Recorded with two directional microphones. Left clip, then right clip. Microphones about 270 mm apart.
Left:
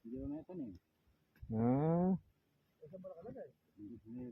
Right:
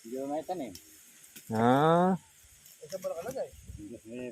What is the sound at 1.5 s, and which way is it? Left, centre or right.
Speech, centre.